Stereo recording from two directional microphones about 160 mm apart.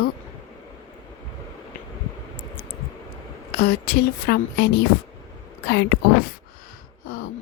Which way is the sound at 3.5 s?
80° left.